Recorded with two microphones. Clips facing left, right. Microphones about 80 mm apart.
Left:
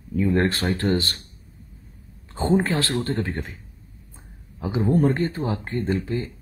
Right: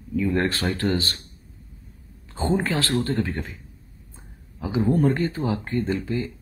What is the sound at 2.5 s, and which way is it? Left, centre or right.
Speech, left.